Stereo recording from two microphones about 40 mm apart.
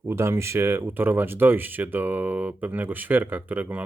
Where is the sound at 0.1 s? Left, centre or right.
Right.